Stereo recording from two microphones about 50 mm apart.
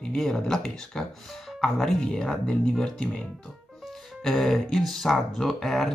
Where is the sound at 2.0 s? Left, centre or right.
Centre.